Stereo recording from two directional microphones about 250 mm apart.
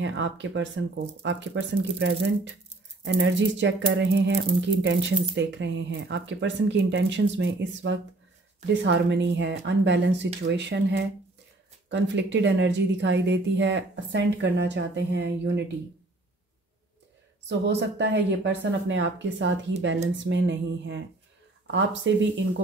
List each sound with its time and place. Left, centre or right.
0.0 s speech: right
17.5 s speech: right